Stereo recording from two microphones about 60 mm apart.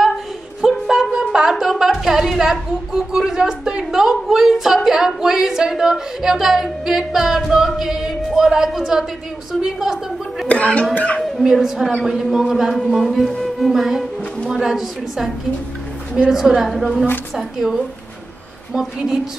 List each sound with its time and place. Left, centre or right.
0.6 s a sound: centre
9.5 s a woman's voice: centre
10.5 s speech: left
11.1 s music: centre
16.3 s a woman's voice: centre
16.7 s music: centre